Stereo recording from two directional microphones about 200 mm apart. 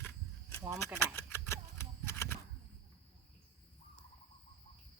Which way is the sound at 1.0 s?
10° left (ahead or behind).